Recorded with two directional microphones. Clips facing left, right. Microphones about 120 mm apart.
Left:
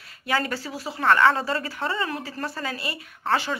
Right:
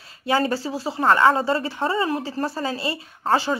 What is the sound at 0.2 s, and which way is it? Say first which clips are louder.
Speech: right 5 dB; 30° right (ahead or behind).